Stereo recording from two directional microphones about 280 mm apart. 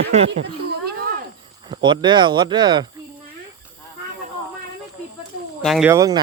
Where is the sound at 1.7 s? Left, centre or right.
Centre.